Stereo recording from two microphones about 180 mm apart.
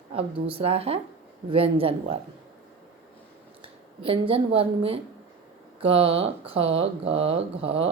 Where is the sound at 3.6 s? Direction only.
30° right (ahead or behind).